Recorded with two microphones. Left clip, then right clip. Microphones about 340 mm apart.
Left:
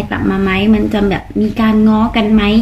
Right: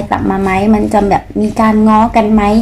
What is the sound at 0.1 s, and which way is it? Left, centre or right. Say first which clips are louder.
A woman's voice: right 3 dB; centre.